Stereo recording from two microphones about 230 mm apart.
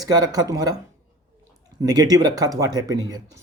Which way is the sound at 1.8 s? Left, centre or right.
Centre.